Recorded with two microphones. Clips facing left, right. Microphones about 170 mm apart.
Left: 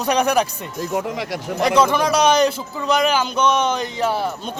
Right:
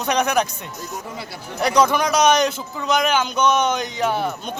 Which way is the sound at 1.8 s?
5° left (ahead or behind).